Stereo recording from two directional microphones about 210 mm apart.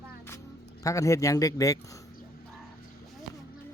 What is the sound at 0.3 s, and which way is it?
Speech, 15° left (ahead or behind).